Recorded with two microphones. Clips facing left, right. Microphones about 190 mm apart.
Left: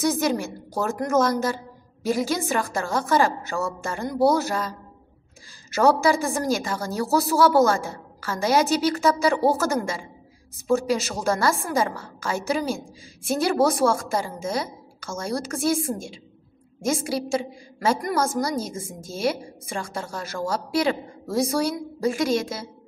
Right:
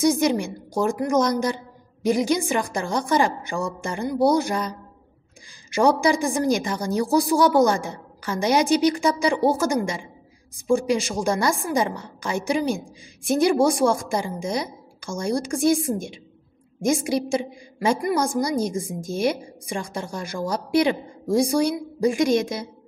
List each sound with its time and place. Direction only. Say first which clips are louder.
0.0 s a woman's voice: right 3 dB; 10° right (ahead or behind)